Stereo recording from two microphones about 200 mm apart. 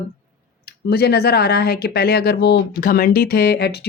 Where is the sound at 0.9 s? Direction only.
50° left (ahead or behind).